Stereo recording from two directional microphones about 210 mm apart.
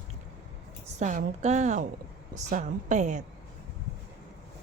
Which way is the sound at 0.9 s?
35° right (ahead or behind).